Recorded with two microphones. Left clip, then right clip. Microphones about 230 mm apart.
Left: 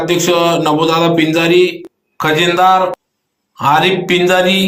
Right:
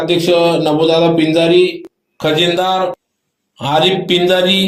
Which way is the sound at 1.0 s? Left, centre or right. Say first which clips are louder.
Even; centre.